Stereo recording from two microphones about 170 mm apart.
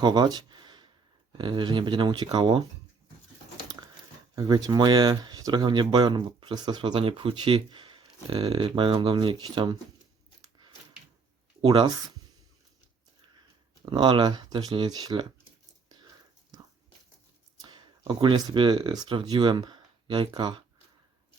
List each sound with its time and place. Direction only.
0.0 s a sound: 25° right (ahead or behind)
1.4 s speech: 25° right (ahead or behind)
4.4 s speech: 20° right (ahead or behind)
11.6 s speech: 30° right (ahead or behind)
13.9 s speech: 25° right (ahead or behind)
17.6 s speech: 25° right (ahead or behind)